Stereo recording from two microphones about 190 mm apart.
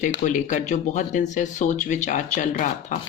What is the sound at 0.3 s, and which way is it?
Speech, 40° left (ahead or behind).